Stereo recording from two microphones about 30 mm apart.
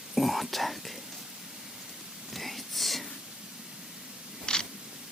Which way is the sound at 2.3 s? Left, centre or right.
Centre.